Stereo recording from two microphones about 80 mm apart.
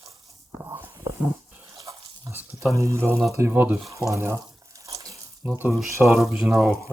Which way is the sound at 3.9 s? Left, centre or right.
Right.